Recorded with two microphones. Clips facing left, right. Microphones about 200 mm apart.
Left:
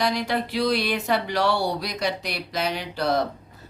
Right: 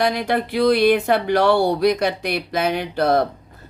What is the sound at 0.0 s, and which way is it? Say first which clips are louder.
Speech: right 4 dB; 55° right (ahead or behind).